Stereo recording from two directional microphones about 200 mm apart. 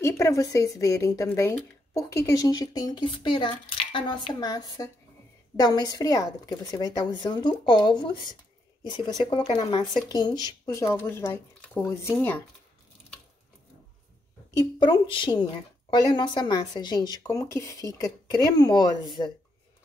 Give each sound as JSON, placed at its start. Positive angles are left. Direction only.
{"t": 0.0, "sound": "a woman's voice", "side_deg": 15}
{"t": 14.5, "sound": "a woman's voice", "side_deg": 25}